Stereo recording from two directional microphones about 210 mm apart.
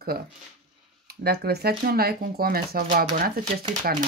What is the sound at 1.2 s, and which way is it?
Speech, 50° right (ahead or behind).